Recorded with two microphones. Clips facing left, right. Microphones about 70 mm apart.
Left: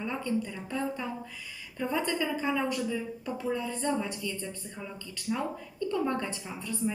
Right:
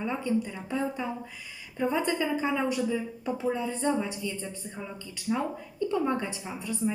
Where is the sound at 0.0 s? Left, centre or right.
Centre.